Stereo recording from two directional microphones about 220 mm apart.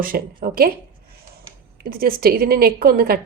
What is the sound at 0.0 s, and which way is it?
Speech, 40° right (ahead or behind).